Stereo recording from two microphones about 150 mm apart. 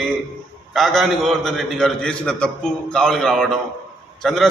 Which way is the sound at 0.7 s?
Centre (ahead or behind).